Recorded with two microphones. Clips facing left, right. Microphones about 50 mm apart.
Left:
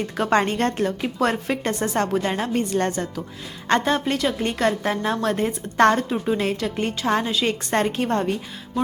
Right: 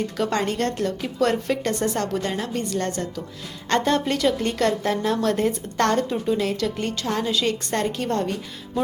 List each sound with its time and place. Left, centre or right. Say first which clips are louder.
0.2 s a woman's voice: left 4 dB; left; by 6.1 s centre
6.2 s a woman's voice: even; left